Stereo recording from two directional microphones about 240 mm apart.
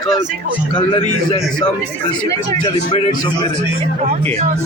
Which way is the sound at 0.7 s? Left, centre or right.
Left.